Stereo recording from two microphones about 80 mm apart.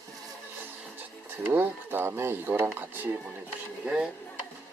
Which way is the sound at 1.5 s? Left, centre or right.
Right.